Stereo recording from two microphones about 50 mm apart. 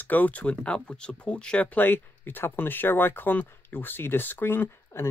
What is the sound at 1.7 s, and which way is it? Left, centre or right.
Speech, left.